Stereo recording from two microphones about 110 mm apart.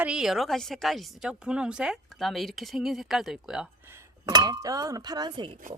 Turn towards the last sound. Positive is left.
turn(degrees=-45)  # may be behind; listen again after turning